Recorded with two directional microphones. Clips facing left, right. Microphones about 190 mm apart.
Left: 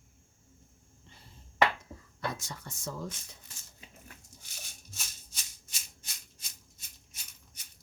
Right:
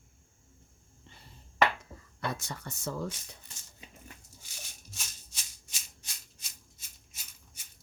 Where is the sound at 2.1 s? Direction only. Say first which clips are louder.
Right 1 dB; 60° right (ahead or behind).